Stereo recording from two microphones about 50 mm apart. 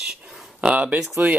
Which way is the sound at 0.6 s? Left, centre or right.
Right.